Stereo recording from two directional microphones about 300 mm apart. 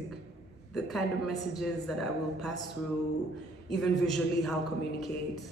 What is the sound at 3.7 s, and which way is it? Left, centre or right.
Speech, centre.